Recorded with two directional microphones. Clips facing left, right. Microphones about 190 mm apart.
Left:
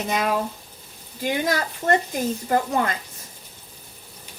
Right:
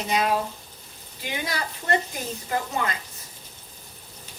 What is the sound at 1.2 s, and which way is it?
Speech, 45° left (ahead or behind).